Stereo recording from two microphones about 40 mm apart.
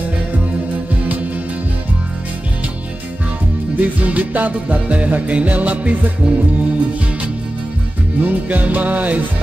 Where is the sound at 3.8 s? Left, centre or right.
Right.